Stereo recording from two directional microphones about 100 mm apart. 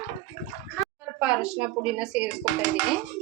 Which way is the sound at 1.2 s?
10° right (ahead or behind).